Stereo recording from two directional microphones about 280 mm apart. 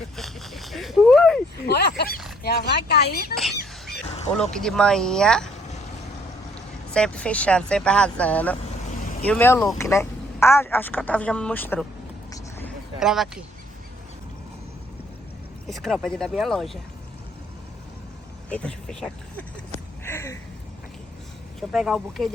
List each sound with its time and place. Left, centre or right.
0.2 s a sound: centre
1.6 s a sound: left
2.4 s speech: left
4.5 s speech: centre
6.9 s speech: centre
12.3 s vehicle: centre
15.6 s speech: centre
18.4 s speech: centre
20.1 s a sound: centre
21.7 s speech: centre